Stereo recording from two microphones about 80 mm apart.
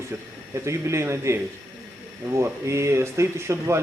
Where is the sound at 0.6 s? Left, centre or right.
Right.